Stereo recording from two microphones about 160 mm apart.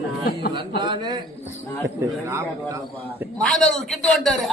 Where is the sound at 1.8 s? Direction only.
15° right (ahead or behind).